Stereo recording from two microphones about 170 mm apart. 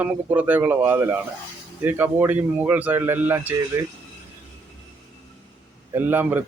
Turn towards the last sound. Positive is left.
turn(degrees=-10)  # may be behind; listen again after turning